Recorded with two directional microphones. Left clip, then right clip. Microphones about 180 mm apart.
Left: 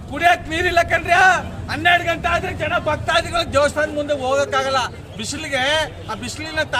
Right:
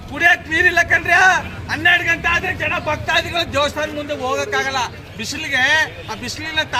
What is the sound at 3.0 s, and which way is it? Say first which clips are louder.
A man's voice: even; 30° left (ahead or behind).